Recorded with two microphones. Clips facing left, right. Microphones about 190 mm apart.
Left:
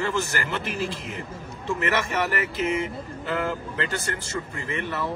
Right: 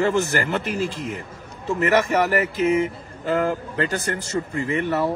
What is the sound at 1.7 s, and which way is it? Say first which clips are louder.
Speech: right 6 dB; 40° right (ahead or behind).